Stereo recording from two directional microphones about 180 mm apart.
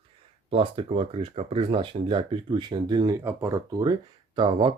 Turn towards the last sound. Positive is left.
turn(degrees=-25)  # may be behind; listen again after turning